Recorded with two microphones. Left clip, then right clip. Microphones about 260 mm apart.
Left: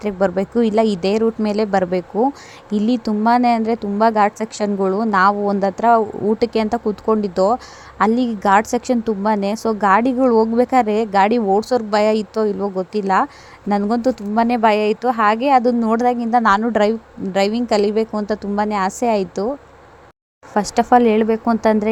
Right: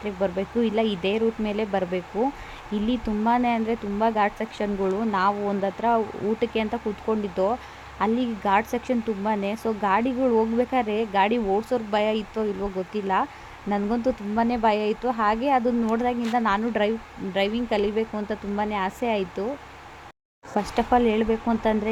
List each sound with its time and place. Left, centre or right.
0.0 s speech: left
20.6 s speech: left